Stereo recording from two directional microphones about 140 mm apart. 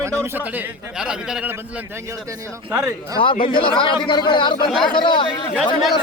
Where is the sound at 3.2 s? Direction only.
35° left (ahead or behind).